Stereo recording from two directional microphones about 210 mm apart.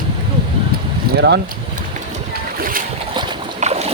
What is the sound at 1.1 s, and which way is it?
Speech, 55° right (ahead or behind).